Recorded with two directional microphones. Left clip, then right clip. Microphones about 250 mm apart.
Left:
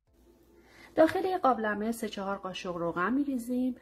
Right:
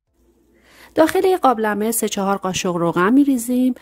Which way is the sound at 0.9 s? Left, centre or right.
Right.